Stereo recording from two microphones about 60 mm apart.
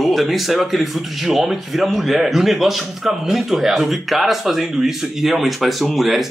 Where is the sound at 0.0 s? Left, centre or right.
Centre.